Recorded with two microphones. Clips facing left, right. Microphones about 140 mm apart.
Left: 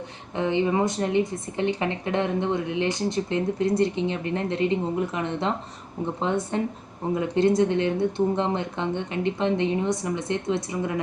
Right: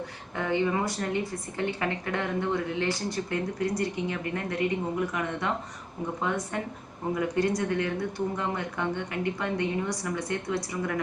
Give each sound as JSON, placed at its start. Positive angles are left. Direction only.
{"t": 0.3, "sound": "a woman's voice", "side_deg": 20}